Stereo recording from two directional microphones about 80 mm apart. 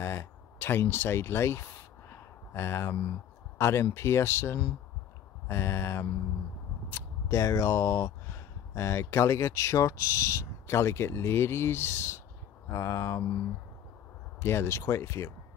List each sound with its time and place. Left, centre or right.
0.0 s a sound: left
3.5 s speech: left
14.4 s speech: left